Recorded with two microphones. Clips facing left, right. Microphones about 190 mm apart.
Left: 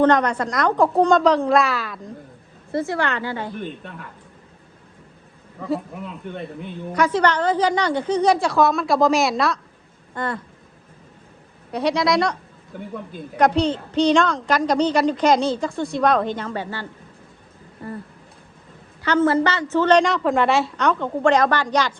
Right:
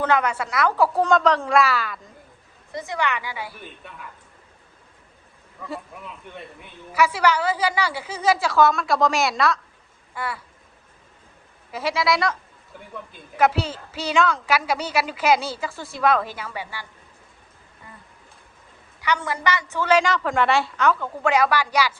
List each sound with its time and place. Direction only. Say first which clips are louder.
0.0 s a woman's voice: left 5 dB; 5° right (ahead or behind)
2.7 s a woman's voice: left 4 dB; 15° right (ahead or behind)
6.9 s a woman's voice: left 1 dB; 5° right (ahead or behind)
11.7 s a woman's voice: left 4 dB; 5° right (ahead or behind)
19.0 s a woman's voice: left 7 dB; 15° right (ahead or behind)
20.9 s a woman's voice: left 5 dB; 25° left (ahead or behind)
21.2 s a woman's voice: left 2 dB; 10° right (ahead or behind)